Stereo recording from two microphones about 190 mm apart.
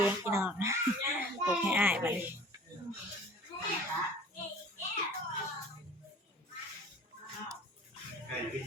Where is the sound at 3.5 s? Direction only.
25° left (ahead or behind).